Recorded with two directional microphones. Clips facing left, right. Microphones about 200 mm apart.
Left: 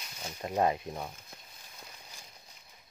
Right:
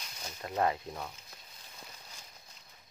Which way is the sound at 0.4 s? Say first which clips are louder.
Left 2 dB; 20° left (ahead or behind).